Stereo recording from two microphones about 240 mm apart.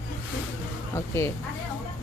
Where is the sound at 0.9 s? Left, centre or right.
Centre.